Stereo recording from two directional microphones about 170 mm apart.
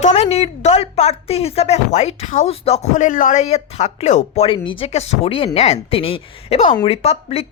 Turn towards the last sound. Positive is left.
turn(degrees=40)  # may be behind; listen again after turning